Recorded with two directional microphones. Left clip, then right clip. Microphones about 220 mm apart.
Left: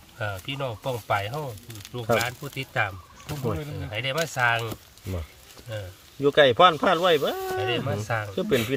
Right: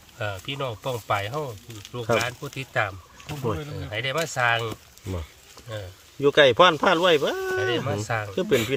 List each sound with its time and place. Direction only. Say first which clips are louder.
0.2 s speech: right 1 dB; 25° right (ahead or behind)
6.2 s speech: right 1 dB; 20° right (ahead or behind)